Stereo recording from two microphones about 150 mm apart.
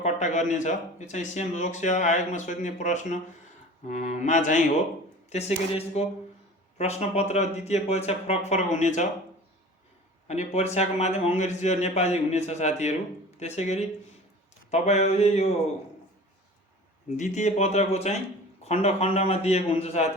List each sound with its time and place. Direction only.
0.0 s a man's voice: 55° left (ahead or behind)
5.3 s a man's voice: 45° left (ahead or behind)
10.2 s a man's voice: 50° left (ahead or behind)
17.2 s a man's voice: 55° left (ahead or behind)